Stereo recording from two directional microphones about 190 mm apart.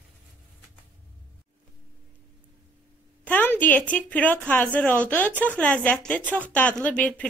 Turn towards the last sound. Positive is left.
turn(degrees=5)  # may be behind; listen again after turning